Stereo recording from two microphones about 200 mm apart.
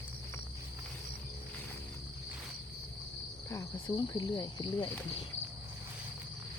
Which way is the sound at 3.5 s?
20° left (ahead or behind).